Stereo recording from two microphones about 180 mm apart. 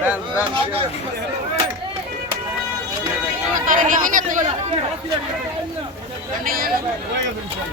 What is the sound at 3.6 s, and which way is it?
Speech, 45° right (ahead or behind).